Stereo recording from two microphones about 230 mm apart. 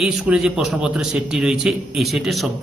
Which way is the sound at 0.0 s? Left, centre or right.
Centre.